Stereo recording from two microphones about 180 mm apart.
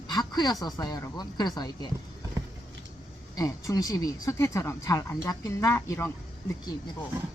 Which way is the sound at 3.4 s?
20° left (ahead or behind).